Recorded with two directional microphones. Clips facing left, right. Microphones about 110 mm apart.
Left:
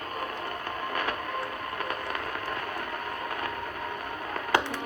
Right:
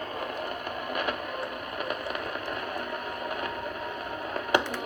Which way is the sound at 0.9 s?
15° right (ahead or behind).